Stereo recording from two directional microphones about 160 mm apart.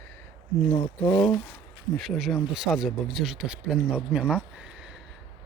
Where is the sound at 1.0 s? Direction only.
30° left (ahead or behind).